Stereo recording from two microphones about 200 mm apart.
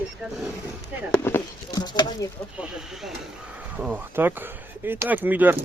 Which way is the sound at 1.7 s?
20° left (ahead or behind).